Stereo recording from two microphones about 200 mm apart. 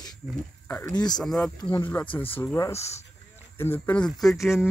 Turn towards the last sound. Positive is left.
turn(degrees=0)  # may be behind; listen again after turning